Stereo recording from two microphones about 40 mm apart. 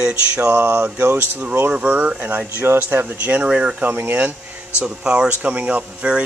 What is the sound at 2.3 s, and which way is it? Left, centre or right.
Speech, right.